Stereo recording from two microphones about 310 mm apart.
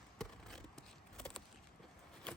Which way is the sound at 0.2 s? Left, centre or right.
Centre.